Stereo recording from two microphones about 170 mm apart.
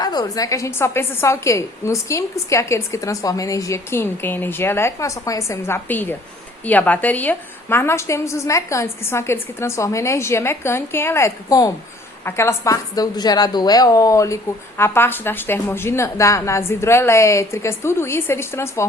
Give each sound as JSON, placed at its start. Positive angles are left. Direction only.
{"t": 0.0, "sound": "a woman's voice", "side_deg": 25}